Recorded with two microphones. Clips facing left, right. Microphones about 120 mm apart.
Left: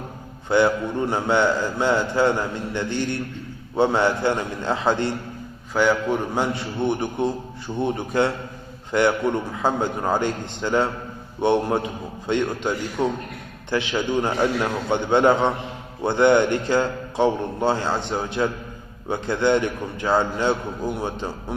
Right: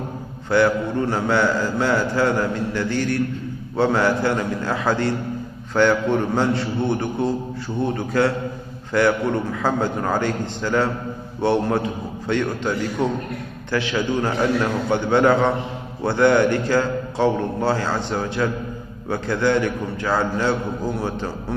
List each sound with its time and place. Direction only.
0.5 s a man's voice: 20° left (ahead or behind)
5.7 s a man's voice: 10° left (ahead or behind)